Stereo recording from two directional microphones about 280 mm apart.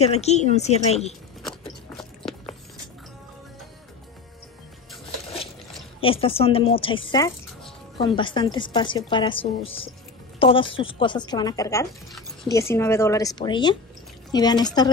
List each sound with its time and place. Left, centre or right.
0.0 s a woman's voice: left
5.9 s a woman's voice: centre